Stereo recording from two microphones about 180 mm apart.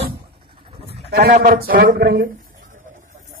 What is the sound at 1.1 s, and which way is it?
A man's voice, 60° right (ahead or behind).